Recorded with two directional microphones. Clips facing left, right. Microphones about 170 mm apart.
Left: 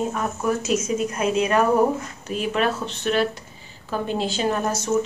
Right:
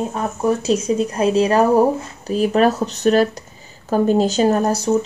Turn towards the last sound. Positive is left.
turn(degrees=-35)  # may be behind; listen again after turning